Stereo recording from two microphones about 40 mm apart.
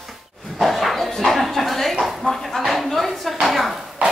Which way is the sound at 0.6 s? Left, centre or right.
Centre.